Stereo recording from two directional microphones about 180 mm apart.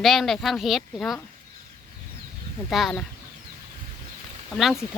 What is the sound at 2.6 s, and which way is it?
Speech, centre (ahead or behind).